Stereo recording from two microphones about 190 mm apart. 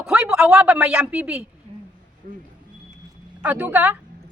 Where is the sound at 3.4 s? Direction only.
10° right (ahead or behind).